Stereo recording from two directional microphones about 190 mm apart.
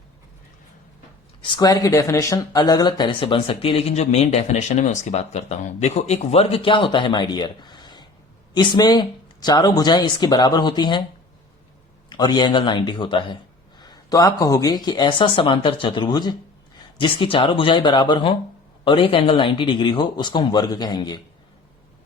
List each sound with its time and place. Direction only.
1.4 s speech: 20° left (ahead or behind)
12.0 s speech: 20° left (ahead or behind)